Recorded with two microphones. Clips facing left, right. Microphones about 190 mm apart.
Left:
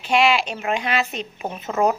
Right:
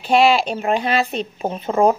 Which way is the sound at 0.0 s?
35° right (ahead or behind).